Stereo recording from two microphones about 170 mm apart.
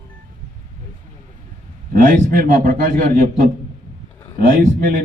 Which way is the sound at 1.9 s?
55° right (ahead or behind).